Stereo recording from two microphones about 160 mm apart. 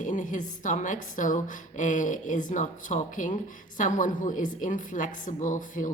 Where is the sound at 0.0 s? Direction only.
55° left (ahead or behind).